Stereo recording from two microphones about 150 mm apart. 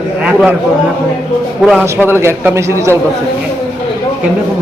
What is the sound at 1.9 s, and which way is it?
A man's voice, 15° right (ahead or behind).